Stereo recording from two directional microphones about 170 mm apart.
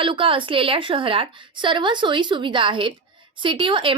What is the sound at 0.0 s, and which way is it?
Speech, 30° right (ahead or behind).